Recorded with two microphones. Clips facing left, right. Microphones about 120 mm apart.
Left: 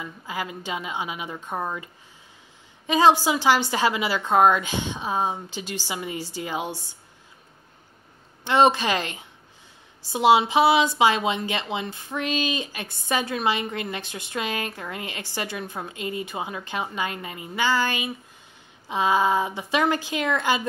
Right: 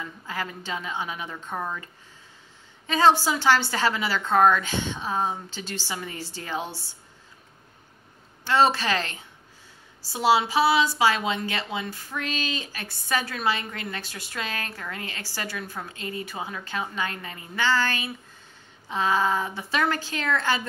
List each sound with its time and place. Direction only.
0.0 s a woman's voice: 10° left (ahead or behind)
2.9 s a woman's voice: 15° left (ahead or behind)
8.5 s a woman's voice: 20° left (ahead or behind)